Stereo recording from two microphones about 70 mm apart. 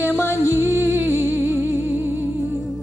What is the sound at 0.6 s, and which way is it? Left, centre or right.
Music, right.